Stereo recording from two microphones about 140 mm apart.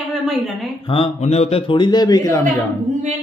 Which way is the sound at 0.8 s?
40° left (ahead or behind).